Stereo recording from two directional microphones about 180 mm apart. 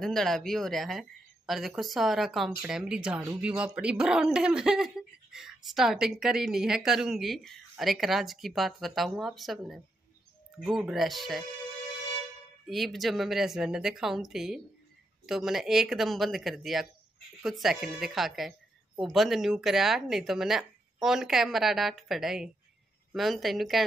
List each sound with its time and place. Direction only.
0.0 s speech: centre (ahead or behind)
3.2 s speech: 15° right (ahead or behind)
3.4 s speech: 5° right (ahead or behind)
12.6 s speech: centre (ahead or behind)